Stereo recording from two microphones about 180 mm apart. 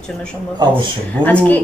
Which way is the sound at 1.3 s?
10° left (ahead or behind).